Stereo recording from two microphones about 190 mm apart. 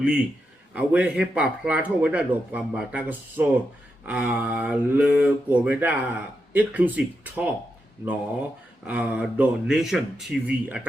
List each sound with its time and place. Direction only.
0.0 s speech: 5° right (ahead or behind)
8.9 s speech: 5° right (ahead or behind)